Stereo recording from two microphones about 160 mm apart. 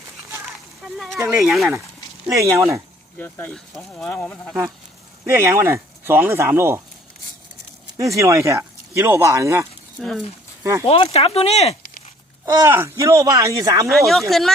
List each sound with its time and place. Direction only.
1.3 s speech: centre (ahead or behind)
2.2 s speech: 20° right (ahead or behind)
3.2 s speech: 10° left (ahead or behind)
5.2 s speech: 15° right (ahead or behind)
7.9 s speech: 20° right (ahead or behind)
10.0 s speech: centre (ahead or behind)
10.6 s speech: 20° right (ahead or behind)
10.8 s speech: 35° left (ahead or behind)
12.5 s speech: 20° right (ahead or behind)
13.8 s speech: centre (ahead or behind)